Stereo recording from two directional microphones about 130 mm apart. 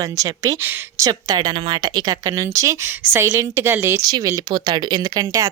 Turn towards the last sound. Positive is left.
turn(degrees=-30)  # may be behind; listen again after turning